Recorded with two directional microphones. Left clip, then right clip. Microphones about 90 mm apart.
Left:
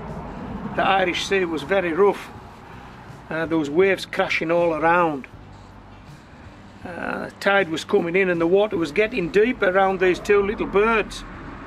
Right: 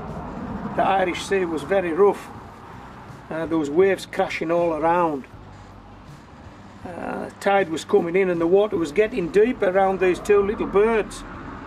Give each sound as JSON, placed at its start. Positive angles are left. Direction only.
{"t": 0.7, "sound": "speech", "side_deg": 20}
{"t": 6.9, "sound": "speech", "side_deg": 30}